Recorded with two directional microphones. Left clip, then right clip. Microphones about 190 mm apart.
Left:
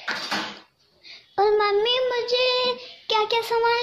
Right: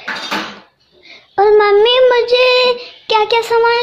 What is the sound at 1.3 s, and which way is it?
Child singing, 5° right (ahead or behind).